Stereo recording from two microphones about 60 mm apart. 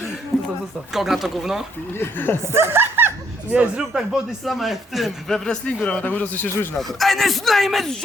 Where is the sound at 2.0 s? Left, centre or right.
Left.